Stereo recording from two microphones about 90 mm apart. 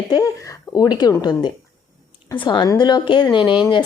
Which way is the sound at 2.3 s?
60° left (ahead or behind).